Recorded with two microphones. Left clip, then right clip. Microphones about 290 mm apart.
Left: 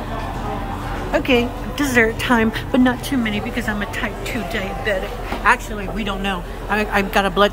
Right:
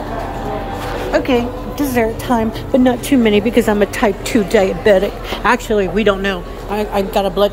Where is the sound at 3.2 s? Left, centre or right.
Centre.